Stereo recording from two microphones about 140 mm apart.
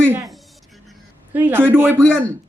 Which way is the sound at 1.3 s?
15° right (ahead or behind).